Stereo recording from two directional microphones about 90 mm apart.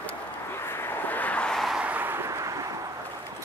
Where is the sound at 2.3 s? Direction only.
40° right (ahead or behind).